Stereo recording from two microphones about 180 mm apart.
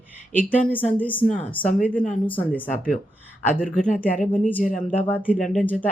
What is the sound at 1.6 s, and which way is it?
Speech, 45° left (ahead or behind).